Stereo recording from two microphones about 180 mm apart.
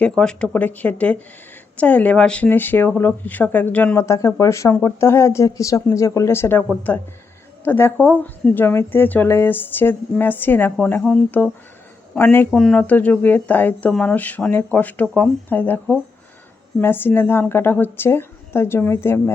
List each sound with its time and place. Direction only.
0.0 s speech: 5° left (ahead or behind)